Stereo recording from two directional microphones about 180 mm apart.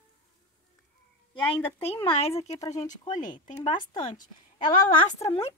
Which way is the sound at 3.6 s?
25° left (ahead or behind).